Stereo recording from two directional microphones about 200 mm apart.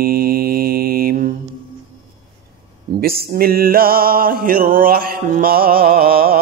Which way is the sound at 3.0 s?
50° right (ahead or behind).